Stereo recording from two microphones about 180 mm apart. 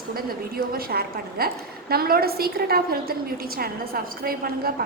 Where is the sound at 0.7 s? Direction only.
55° right (ahead or behind).